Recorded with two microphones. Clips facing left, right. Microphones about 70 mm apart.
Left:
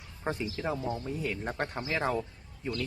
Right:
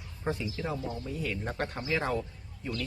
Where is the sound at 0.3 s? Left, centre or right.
Left.